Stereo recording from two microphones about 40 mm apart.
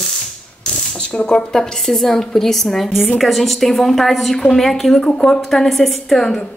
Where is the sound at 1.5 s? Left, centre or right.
Centre.